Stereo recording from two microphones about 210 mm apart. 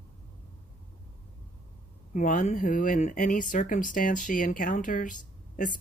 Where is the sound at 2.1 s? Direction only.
35° left (ahead or behind).